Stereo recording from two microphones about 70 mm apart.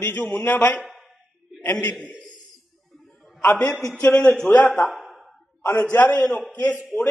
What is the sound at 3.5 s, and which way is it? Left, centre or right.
Speech, centre.